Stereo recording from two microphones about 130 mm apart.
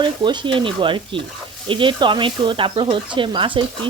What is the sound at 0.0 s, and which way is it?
Speech, 40° right (ahead or behind).